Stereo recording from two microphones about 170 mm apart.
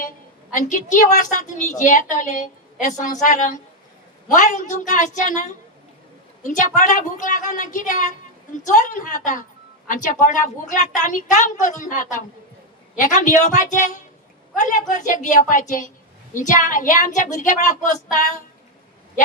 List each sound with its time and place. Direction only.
0.5 s a woman's voice: 50° left (ahead or behind)